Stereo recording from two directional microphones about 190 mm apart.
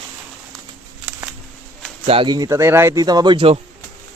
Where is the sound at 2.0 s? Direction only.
25° right (ahead or behind).